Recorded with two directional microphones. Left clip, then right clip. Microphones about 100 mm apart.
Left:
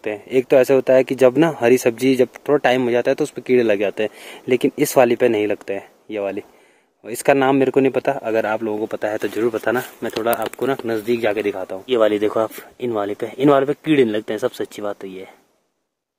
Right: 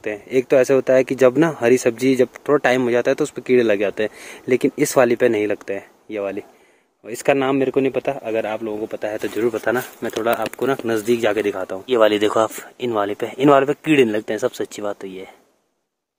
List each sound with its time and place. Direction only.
0.0 s speech: 25° left (ahead or behind)
7.1 s speech: 35° left (ahead or behind); by 9.1 s 75° left (ahead or behind)
9.1 s speech: 50° left (ahead or behind)
9.6 s speech: 25° left (ahead or behind)
10.9 s speech: 15° right (ahead or behind)
11.8 s speech: 5° left (ahead or behind)